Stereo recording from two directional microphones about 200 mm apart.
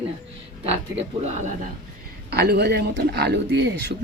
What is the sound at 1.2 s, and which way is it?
Speech, 35° right (ahead or behind).